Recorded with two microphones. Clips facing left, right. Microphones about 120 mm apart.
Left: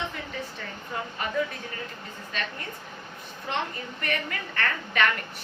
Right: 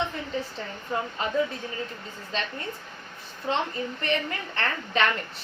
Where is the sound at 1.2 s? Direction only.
25° right (ahead or behind).